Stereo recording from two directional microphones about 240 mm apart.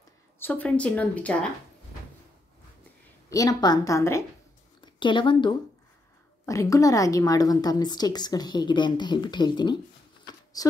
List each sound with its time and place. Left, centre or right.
0.4 s a woman's voice: centre
3.3 s a woman's voice: centre